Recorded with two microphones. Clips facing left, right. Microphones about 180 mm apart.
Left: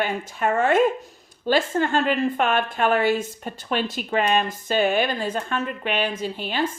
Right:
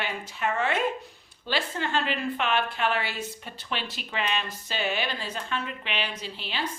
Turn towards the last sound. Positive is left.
turn(degrees=50)  # may be behind; listen again after turning